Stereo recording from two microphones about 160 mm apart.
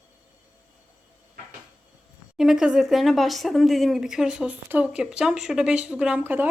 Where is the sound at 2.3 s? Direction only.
5° right (ahead or behind).